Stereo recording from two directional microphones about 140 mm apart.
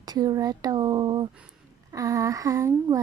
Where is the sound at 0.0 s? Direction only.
25° right (ahead or behind).